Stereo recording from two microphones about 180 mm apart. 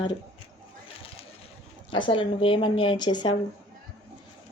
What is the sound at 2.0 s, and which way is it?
Speech, 30° left (ahead or behind).